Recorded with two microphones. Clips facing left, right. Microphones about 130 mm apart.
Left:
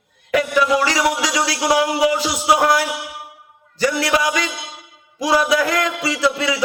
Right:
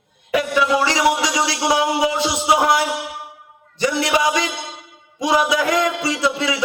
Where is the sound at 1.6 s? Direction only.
25° right (ahead or behind).